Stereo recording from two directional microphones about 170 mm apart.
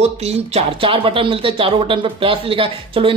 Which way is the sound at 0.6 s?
30° right (ahead or behind).